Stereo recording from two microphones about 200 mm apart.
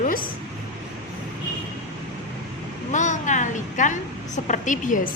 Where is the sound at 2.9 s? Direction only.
35° left (ahead or behind).